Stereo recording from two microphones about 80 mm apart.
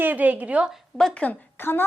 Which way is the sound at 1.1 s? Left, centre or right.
Centre.